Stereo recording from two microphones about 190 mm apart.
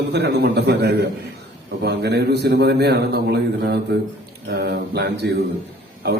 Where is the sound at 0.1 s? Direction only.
60° right (ahead or behind).